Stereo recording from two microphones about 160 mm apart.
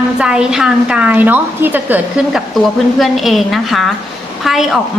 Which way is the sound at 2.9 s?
Centre (ahead or behind).